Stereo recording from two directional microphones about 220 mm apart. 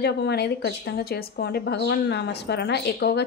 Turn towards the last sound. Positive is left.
turn(degrees=45)  # may be behind; listen again after turning